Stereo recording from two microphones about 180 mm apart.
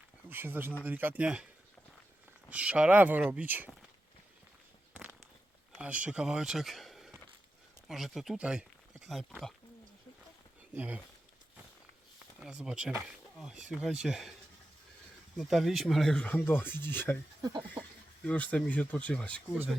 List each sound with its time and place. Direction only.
0.3 s speech: 10° right (ahead or behind)
2.5 s speech: 5° right (ahead or behind)
5.7 s speech: 5° right (ahead or behind)
10.8 s speech: 10° right (ahead or behind)
12.4 s speech: 5° right (ahead or behind)
15.4 s speech: centre (ahead or behind)
17.8 s chuckle: 25° right (ahead or behind)
18.3 s speech: 5° left (ahead or behind)